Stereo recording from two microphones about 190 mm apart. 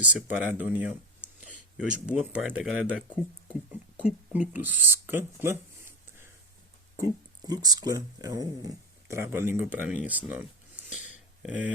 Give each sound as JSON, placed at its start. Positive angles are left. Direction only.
{"t": 0.0, "sound": "speech", "side_deg": -10}
{"t": 2.0, "sound": "speech", "side_deg": -5}